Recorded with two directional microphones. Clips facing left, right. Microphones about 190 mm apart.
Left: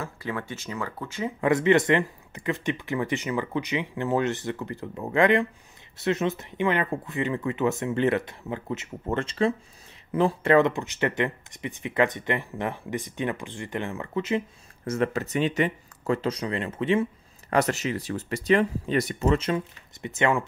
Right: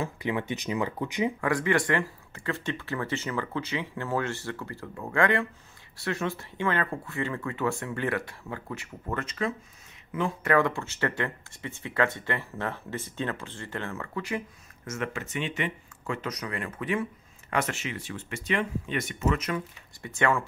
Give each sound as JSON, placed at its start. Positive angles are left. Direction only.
{"t": 0.0, "sound": "speech", "side_deg": -20}
{"t": 1.4, "sound": "speech", "side_deg": 20}
{"t": 14.9, "sound": "speech", "side_deg": 35}
{"t": 17.6, "sound": "speech", "side_deg": 40}